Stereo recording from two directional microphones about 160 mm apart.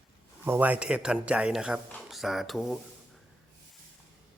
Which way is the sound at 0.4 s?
10° right (ahead or behind).